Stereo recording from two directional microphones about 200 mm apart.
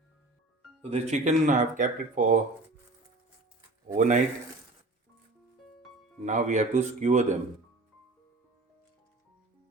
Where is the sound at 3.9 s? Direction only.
40° right (ahead or behind).